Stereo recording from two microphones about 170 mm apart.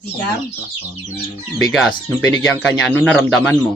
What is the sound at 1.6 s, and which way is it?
A man's voice, centre (ahead or behind).